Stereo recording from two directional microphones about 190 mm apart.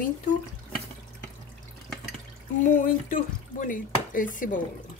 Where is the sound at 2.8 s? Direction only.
45° left (ahead or behind).